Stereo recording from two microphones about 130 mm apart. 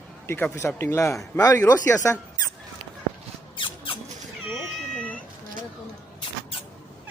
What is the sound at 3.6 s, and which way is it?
Squeak, 40° left (ahead or behind).